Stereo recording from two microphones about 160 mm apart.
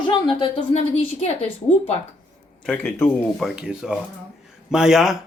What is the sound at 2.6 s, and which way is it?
Speech, 10° left (ahead or behind).